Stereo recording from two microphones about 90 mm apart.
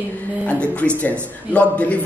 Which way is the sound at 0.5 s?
15° left (ahead or behind).